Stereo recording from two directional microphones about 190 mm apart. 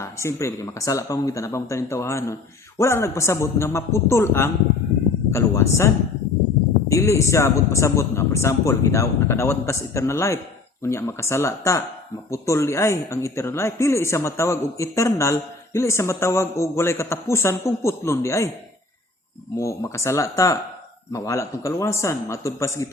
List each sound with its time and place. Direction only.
0.0 s speech: 15° left (ahead or behind)
19.5 s speech: 15° left (ahead or behind)